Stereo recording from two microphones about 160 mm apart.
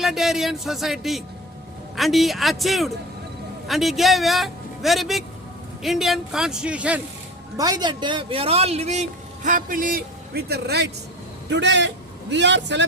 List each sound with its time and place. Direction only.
0.0 s a man's voice: centre (ahead or behind)
7.5 s a man's voice: 25° right (ahead or behind); by 12.8 s 90° right